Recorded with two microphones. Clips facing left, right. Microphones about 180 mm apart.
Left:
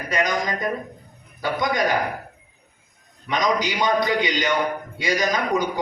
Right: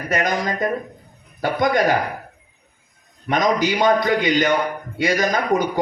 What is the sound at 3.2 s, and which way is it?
A man's voice, 50° right (ahead or behind).